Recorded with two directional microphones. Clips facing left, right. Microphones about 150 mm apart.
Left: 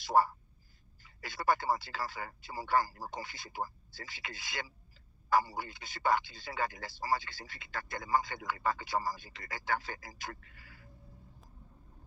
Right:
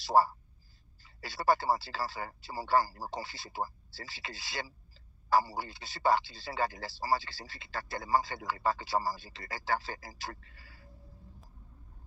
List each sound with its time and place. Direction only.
0.1 s a man's voice: 30° right (ahead or behind)